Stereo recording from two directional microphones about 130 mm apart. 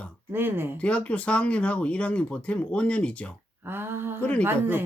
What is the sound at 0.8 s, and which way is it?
Speech, 10° left (ahead or behind).